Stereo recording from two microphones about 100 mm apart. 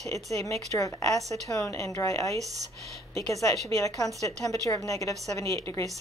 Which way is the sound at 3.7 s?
30° left (ahead or behind).